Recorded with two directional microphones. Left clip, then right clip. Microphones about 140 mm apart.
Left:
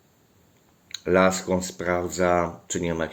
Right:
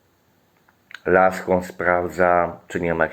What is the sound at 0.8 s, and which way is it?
Speech, 30° left (ahead or behind).